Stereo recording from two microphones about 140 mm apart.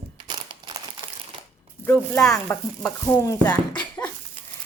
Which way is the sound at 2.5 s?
15° left (ahead or behind).